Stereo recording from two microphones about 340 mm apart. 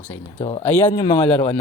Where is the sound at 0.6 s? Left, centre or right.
Centre.